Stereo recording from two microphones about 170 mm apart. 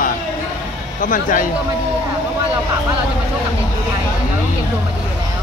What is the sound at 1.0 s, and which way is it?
Speech, 55° left (ahead or behind).